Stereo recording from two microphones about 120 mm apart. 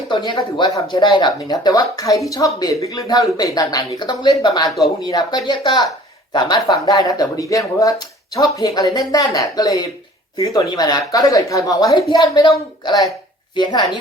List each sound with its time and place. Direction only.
0.3 s speech: 40° left (ahead or behind)